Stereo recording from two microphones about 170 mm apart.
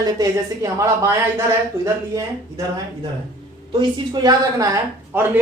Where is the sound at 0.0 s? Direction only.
20° right (ahead or behind).